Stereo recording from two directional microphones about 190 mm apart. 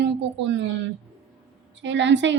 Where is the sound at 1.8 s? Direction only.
70° right (ahead or behind).